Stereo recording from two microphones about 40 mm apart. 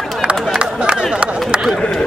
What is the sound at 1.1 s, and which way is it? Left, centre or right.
Chop, right.